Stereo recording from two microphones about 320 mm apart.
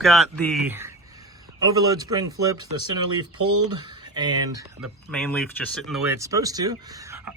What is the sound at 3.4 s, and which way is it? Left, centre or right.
Speech, right.